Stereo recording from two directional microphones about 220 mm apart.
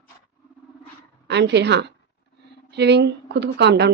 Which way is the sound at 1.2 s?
50° right (ahead or behind).